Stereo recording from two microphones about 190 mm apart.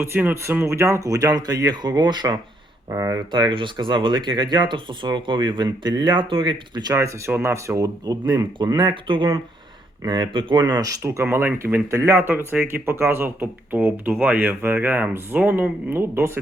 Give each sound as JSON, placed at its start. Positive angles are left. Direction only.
{"t": 0.0, "sound": "speech", "side_deg": -10}